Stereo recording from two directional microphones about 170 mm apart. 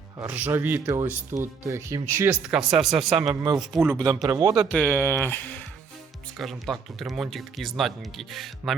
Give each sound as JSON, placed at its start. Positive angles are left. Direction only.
{"t": 0.3, "sound": "speech", "side_deg": -10}
{"t": 2.5, "sound": "speech", "side_deg": -5}
{"t": 3.2, "sound": "speech", "side_deg": -20}
{"t": 4.7, "sound": "speech", "side_deg": 10}